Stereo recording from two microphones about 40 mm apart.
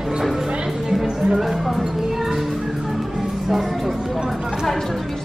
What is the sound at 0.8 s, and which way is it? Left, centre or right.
Speech, centre.